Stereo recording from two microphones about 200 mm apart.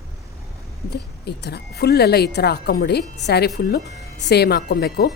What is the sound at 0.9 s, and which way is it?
Speech, 55° left (ahead or behind).